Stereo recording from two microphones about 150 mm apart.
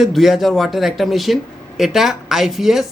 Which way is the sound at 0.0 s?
Centre (ahead or behind).